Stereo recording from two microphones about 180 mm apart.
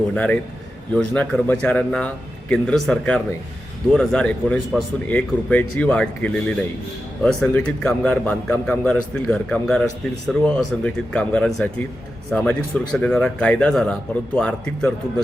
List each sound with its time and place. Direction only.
0.1 s speech: 5° left (ahead or behind)